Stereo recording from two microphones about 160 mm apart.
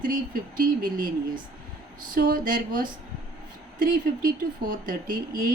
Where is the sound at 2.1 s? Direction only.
60° right (ahead or behind).